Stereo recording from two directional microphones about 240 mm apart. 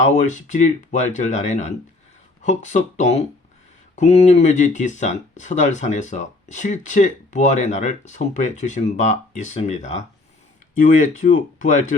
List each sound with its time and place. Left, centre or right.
0.0 s speech: left